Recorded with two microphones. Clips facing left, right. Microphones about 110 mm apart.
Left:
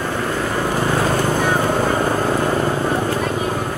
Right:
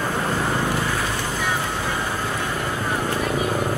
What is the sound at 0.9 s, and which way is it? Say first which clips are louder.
Vehicle: left 8 dB; 45° left (ahead or behind).